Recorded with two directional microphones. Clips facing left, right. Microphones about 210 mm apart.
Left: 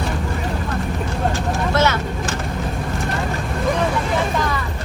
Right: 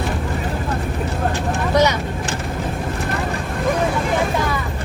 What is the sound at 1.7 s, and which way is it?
Vehicle, 15° right (ahead or behind).